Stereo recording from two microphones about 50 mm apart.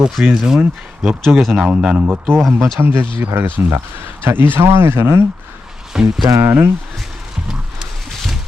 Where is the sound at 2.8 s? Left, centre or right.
Right.